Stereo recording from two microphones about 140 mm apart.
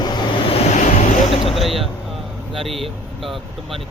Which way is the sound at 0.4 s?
45° left (ahead or behind).